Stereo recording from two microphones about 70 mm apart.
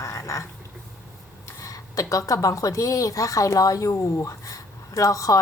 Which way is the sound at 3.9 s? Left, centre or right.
Left.